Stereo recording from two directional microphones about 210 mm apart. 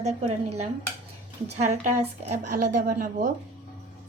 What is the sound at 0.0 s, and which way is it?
A woman's voice, 30° right (ahead or behind).